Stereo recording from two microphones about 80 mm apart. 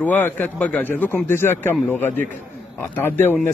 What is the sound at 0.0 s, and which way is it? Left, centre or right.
A man's voice, left.